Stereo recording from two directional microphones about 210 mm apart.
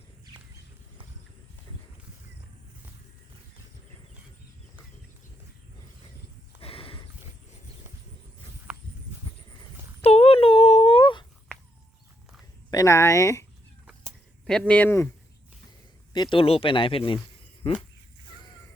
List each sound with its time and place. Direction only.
6.6 s horse: 25° left (ahead or behind)
8.7 s a sound: 5° right (ahead or behind)
10.0 s a sound: 30° left (ahead or behind)
12.7 s speech: 15° left (ahead or behind)
14.4 s speech: 5° left (ahead or behind)
16.1 s speech: 20° left (ahead or behind)